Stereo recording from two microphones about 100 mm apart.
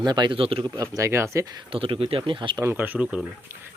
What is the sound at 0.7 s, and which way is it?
Speech, 35° right (ahead or behind).